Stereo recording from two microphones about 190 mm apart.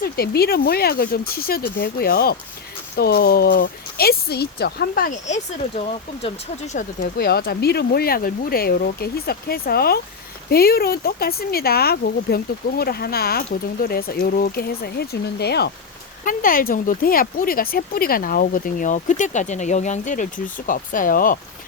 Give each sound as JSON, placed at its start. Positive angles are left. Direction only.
{"t": 0.0, "sound": "speech", "side_deg": 55}
{"t": 6.7, "sound": "speech", "side_deg": 50}
{"t": 16.2, "sound": "speech", "side_deg": 50}